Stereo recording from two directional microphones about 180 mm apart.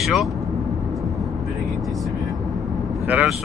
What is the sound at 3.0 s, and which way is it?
Speech, 10° right (ahead or behind).